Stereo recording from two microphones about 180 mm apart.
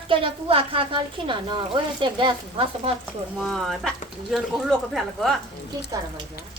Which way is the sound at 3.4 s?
Centre (ahead or behind).